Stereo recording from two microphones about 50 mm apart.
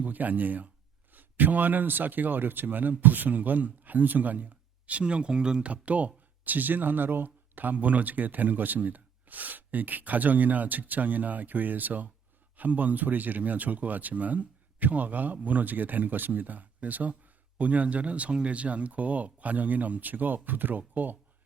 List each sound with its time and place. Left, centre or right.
0.0 s speech: right; by 5.7 s centre
5.7 s speech: right